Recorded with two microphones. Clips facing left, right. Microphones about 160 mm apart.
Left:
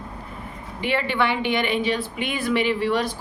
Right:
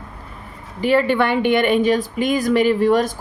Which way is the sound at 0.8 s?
40° right (ahead or behind).